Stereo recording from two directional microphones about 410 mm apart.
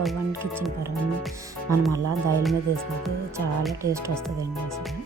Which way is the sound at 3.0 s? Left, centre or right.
Centre.